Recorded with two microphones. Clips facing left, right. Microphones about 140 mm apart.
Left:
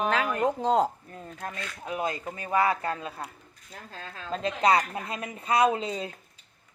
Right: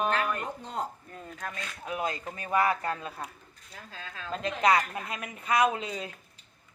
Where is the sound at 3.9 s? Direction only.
40° left (ahead or behind).